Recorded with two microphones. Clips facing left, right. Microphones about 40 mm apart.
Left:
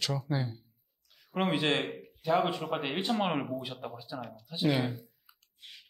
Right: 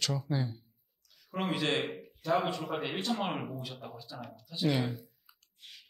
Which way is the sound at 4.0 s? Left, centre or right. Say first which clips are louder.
Left 4 dB; centre.